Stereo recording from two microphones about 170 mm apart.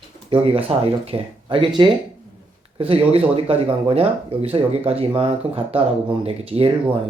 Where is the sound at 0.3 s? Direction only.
30° right (ahead or behind).